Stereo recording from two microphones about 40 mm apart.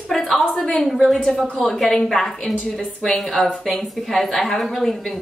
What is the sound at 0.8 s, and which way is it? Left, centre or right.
A woman's voice, centre.